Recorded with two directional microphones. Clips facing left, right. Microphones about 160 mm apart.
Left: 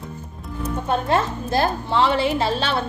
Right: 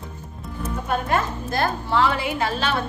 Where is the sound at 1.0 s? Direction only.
25° left (ahead or behind).